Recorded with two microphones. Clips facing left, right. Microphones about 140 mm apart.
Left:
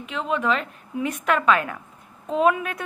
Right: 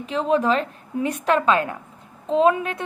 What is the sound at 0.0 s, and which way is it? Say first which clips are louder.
A woman's voice: right 5 dB; 35° right (ahead or behind).